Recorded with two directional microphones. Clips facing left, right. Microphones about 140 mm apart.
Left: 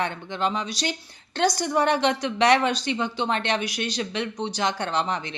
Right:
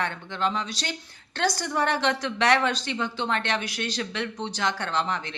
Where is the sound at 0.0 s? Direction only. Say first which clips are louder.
Left 2 dB; 15° left (ahead or behind).